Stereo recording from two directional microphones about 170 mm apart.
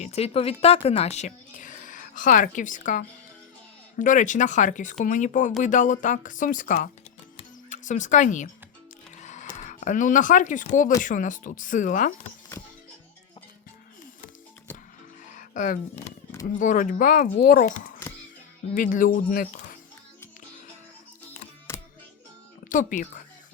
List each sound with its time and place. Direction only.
0.0 s a woman's voice: 40° left (ahead or behind)
9.1 s music: 45° left (ahead or behind)
9.6 s speech: 45° left (ahead or behind)
15.3 s music: 50° left (ahead or behind)
16.6 s speech: 50° left (ahead or behind)
21.7 s music: 15° left (ahead or behind)
22.7 s speech: 50° left (ahead or behind)